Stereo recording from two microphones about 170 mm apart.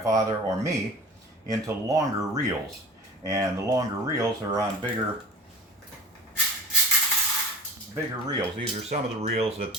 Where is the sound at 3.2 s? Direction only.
20° right (ahead or behind).